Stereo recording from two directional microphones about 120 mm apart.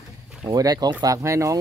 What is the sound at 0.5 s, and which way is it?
Speech, 35° right (ahead or behind).